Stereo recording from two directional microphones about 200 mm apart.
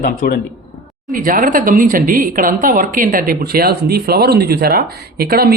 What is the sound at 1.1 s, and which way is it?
A woman's voice, 45° right (ahead or behind).